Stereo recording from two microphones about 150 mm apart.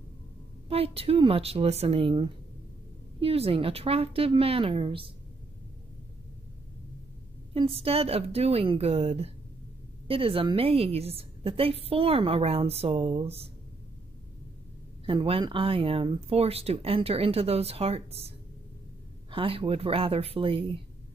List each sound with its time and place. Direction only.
0.7 s a woman's voice: 40° right (ahead or behind)
7.5 s a woman's voice: 40° right (ahead or behind)
15.0 s a woman's voice: 35° right (ahead or behind)
19.3 s a woman's voice: 35° right (ahead or behind)